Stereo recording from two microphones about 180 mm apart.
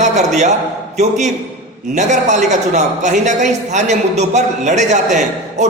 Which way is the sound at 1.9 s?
40° right (ahead or behind).